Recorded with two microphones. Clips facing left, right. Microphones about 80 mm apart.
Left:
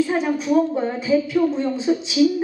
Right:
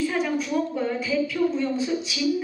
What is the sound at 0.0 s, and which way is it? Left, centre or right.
A woman's voice, left.